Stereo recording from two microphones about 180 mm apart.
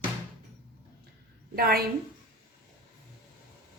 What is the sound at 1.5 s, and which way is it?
Speech, 60° right (ahead or behind).